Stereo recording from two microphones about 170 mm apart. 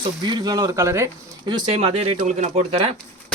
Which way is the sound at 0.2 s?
25° right (ahead or behind).